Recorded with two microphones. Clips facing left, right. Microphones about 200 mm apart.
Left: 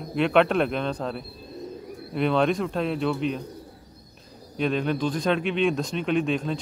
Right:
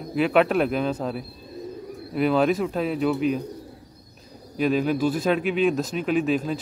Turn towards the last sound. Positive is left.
turn(degrees=-5)  # may be behind; listen again after turning